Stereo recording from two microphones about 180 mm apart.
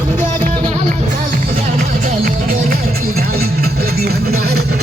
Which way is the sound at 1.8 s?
50° right (ahead or behind).